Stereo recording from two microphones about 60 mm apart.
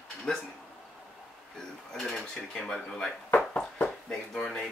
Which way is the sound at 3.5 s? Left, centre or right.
Centre.